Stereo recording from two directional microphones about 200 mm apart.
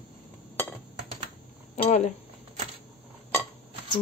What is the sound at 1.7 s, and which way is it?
Speech, 35° left (ahead or behind).